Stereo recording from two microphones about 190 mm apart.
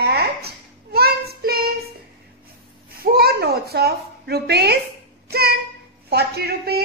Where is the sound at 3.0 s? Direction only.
55° right (ahead or behind).